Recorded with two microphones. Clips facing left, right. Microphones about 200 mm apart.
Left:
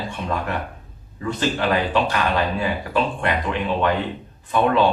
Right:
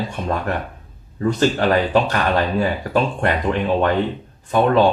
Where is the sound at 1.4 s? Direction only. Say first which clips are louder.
Right 3 dB; 45° right (ahead or behind).